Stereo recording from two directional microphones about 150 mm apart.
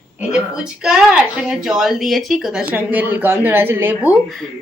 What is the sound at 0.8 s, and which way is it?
Speech, 5° right (ahead or behind).